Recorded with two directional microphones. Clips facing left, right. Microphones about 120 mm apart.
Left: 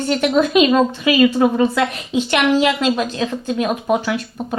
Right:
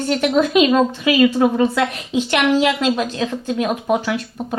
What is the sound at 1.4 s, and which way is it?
Speech, 30° left (ahead or behind).